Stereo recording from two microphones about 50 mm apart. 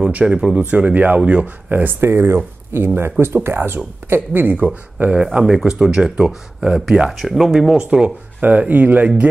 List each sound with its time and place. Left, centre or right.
0.0 s speech: right
0.7 s speech: right
1.7 s speech: right
5.0 s speech: right
5.4 s speech: centre
7.8 s speech: centre
8.4 s speech: right